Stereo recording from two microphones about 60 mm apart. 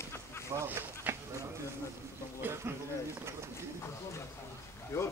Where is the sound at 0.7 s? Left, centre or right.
Right.